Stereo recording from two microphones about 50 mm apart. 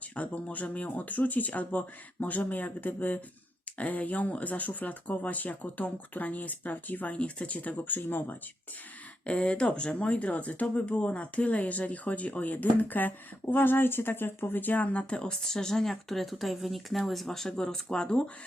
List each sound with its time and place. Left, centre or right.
0.2 s speech: left
7.8 s speech: left
9.2 s speech: centre
15.1 s speech: centre